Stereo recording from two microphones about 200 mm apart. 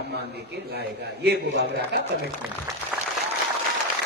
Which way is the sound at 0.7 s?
55° right (ahead or behind).